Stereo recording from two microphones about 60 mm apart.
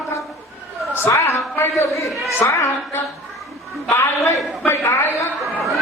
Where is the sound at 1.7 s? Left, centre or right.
Left.